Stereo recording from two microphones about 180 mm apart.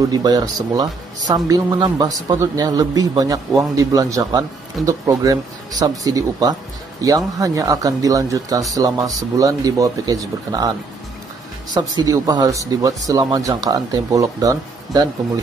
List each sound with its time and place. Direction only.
0.1 s speech: 20° right (ahead or behind)
11.7 s speech: 20° right (ahead or behind)